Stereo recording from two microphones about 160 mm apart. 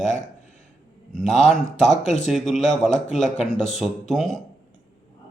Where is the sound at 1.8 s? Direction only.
45° left (ahead or behind).